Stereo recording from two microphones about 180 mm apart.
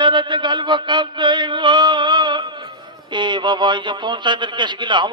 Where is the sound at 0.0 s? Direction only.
25° right (ahead or behind).